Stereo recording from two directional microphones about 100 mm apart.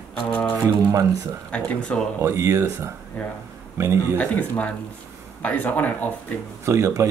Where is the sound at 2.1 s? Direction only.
30° right (ahead or behind).